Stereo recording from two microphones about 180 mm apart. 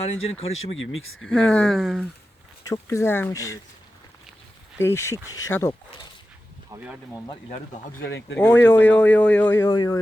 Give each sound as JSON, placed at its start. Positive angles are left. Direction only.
{"t": 0.0, "sound": "speech", "side_deg": 35}
{"t": 1.2, "sound": "speech", "side_deg": 5}
{"t": 2.6, "sound": "speech", "side_deg": 15}
{"t": 4.8, "sound": "speech", "side_deg": 15}
{"t": 6.7, "sound": "speech", "side_deg": -10}
{"t": 8.4, "sound": "speech", "side_deg": 10}